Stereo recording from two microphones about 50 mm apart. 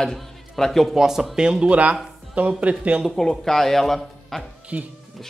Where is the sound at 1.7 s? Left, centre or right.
Right.